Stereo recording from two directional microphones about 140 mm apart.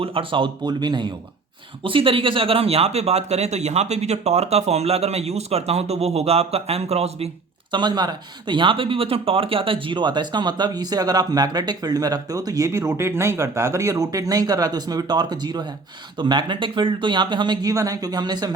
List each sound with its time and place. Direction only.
0.0 s speech: 40° right (ahead or behind)
7.7 s speech: 30° right (ahead or behind)